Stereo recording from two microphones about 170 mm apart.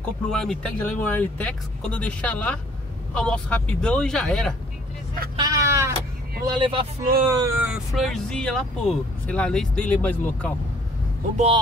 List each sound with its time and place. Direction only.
0.0 s speech: 5° left (ahead or behind)
5.3 s vehicle: 25° right (ahead or behind)
6.4 s speech: 30° right (ahead or behind)
7.2 s speech: 20° right (ahead or behind); by 10.5 s 10° left (ahead or behind)